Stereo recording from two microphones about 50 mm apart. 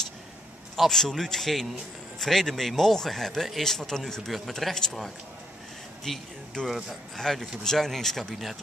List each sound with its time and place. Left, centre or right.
0.7 s speech: centre
6.0 s speech: centre